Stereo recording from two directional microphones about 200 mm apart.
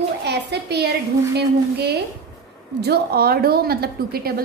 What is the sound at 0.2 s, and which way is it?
Speech, 55° right (ahead or behind).